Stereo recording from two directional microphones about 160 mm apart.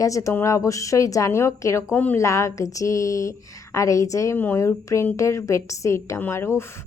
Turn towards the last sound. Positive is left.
turn(degrees=15)  # may be behind; listen again after turning